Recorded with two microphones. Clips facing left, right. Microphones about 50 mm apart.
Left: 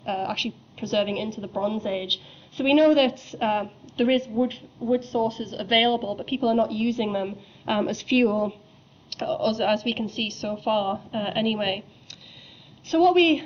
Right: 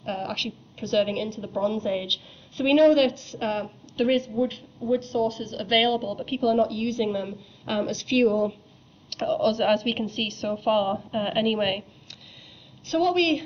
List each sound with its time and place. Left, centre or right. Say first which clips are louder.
0.0 s a woman's voice: left 3 dB; centre
3.0 s a woman's voice: left 1 dB; centre
8.3 s a woman's voice: right 1 dB; centre
12.8 s a woman's voice: left 4 dB; centre